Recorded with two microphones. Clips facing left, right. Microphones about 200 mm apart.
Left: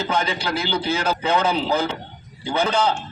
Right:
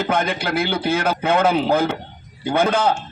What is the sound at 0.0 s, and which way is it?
A man's voice, 55° right (ahead or behind).